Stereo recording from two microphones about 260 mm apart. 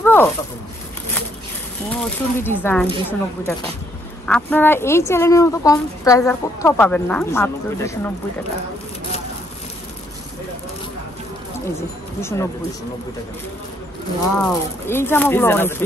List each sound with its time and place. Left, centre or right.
0.0 s a sound: centre
1.9 s speech: centre
12.2 s speech: centre
14.4 s speech: centre